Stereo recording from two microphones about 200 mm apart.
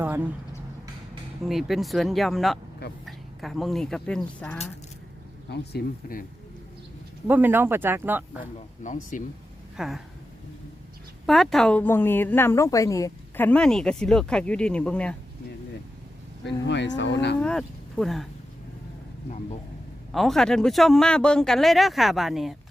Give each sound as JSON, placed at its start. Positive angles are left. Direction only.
{"t": 0.0, "sound": "a sound", "side_deg": -10}
{"t": 1.5, "sound": "a woman's voice", "side_deg": 0}
{"t": 5.5, "sound": "speech", "side_deg": 50}
{"t": 7.3, "sound": "speech", "side_deg": -10}
{"t": 8.8, "sound": "speech", "side_deg": 40}
{"t": 9.7, "sound": "a woman's voice", "side_deg": 0}
{"t": 11.3, "sound": "a woman's voice", "side_deg": 0}
{"t": 16.4, "sound": "cattle", "side_deg": 60}
{"t": 17.4, "sound": "speech", "side_deg": 5}
{"t": 20.1, "sound": "a woman's voice", "side_deg": 0}